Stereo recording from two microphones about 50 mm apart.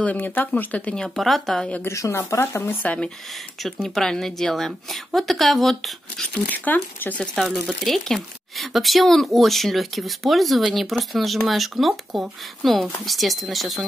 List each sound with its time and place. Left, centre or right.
0.0 s speech: left
0.9 s speech: centre
1.9 s speech: left
2.4 s speech: left
3.8 s a woman's voice: centre
6.5 s speech: left
7.3 s speech: centre